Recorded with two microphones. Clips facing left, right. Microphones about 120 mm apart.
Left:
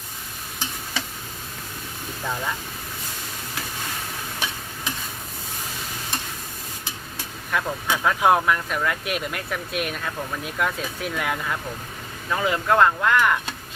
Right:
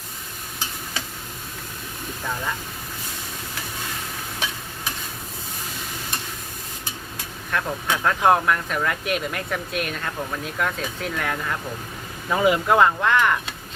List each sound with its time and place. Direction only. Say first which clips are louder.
7.5 s speech: even; 5° left (ahead or behind)
12.3 s speech: right 5 dB; 20° right (ahead or behind)
12.6 s speech: right 1 dB; 5° right (ahead or behind)